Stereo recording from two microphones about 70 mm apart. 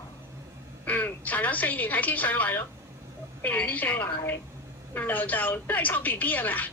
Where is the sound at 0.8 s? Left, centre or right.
Left.